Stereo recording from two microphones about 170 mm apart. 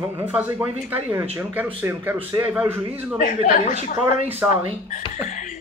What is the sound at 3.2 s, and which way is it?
Speech, 50° left (ahead or behind).